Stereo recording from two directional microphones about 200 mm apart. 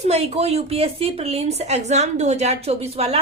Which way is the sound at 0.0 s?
35° right (ahead or behind).